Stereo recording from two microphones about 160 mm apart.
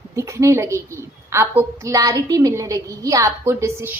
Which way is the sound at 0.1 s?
20° right (ahead or behind).